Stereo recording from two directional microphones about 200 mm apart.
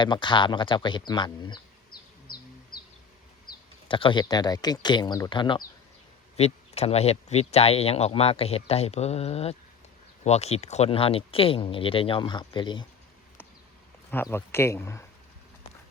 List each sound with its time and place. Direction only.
0.0 s speech: 25° left (ahead or behind)
2.7 s a sound: 50° left (ahead or behind)
3.8 s speech: 25° left (ahead or behind)
14.1 s speech: 10° left (ahead or behind)